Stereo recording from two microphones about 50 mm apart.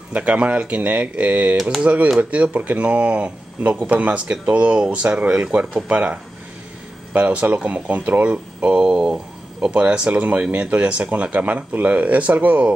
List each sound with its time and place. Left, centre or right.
0.1 s speech: right
10.1 s speech: right